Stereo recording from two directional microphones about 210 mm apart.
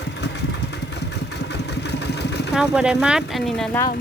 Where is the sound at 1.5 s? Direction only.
55° left (ahead or behind).